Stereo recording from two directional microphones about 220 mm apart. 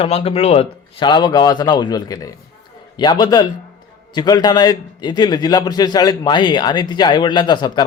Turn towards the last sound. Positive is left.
turn(degrees=20)  # may be behind; listen again after turning